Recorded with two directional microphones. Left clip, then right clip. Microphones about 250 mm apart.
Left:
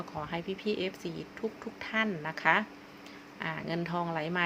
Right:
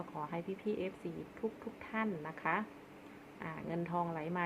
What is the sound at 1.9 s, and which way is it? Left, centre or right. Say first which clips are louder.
A woman's voice: left 8 dB; centre.